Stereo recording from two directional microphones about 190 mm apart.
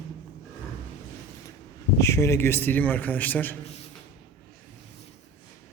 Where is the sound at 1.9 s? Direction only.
15° left (ahead or behind).